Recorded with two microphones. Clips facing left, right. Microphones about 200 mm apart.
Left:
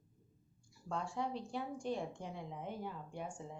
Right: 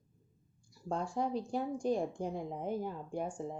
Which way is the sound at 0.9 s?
40° right (ahead or behind).